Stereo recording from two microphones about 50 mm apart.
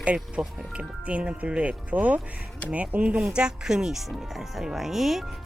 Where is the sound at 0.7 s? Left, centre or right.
Right.